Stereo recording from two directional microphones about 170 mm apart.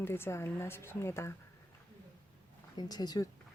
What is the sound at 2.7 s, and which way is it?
Speech, 25° left (ahead or behind).